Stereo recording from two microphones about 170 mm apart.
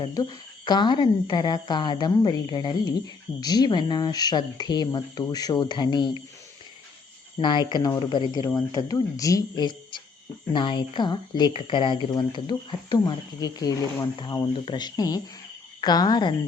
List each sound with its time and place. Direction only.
0.1 s speech: 25° left (ahead or behind)
7.3 s speech: 25° left (ahead or behind)